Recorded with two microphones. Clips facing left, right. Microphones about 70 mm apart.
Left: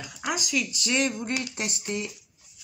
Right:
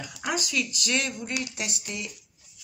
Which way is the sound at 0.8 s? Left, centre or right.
Left.